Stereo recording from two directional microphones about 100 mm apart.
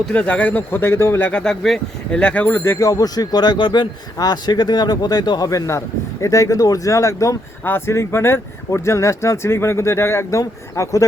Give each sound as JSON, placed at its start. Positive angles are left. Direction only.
{"t": 0.1, "sound": "speech", "side_deg": 15}
{"t": 1.3, "sound": "speech", "side_deg": 10}
{"t": 2.6, "sound": "speech", "side_deg": 30}